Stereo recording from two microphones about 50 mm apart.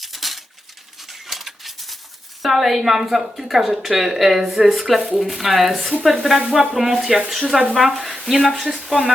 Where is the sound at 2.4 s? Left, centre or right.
Centre.